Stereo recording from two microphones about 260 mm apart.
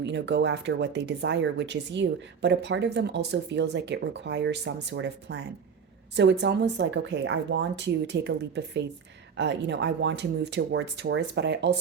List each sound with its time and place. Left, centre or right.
0.0 s speech: right